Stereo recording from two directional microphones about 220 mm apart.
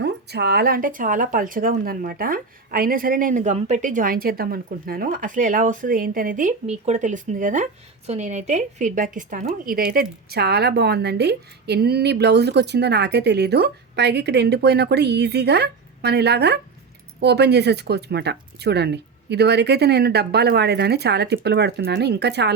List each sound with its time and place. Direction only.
0.0 s a woman's voice: 50° right (ahead or behind)